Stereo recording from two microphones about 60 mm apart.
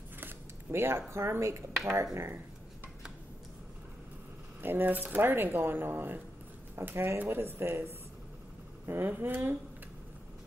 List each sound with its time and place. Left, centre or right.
0.7 s speech: right
4.6 s speech: right
8.8 s speech: right